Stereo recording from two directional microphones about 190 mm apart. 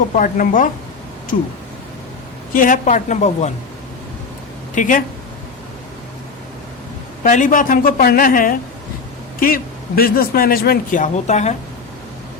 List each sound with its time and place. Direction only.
0.1 s a man's voice: 45° left (ahead or behind)
2.5 s a woman's voice: 45° left (ahead or behind)
4.7 s speech: 45° left (ahead or behind)
7.3 s a man's voice: 40° left (ahead or behind)